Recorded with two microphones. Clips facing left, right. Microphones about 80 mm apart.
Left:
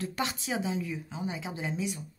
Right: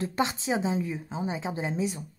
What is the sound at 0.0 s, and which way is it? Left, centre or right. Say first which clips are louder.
A woman's voice: right 5 dB; right.